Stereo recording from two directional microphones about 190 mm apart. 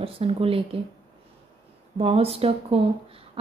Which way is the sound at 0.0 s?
30° right (ahead or behind).